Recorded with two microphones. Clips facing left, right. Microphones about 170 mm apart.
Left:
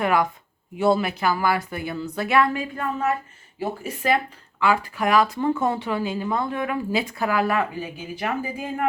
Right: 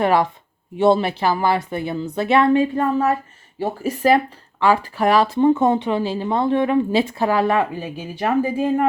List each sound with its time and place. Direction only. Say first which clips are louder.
0.0 s speech: right 4 dB; 30° right (ahead or behind)